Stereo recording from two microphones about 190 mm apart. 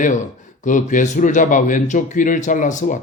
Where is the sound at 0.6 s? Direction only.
40° left (ahead or behind).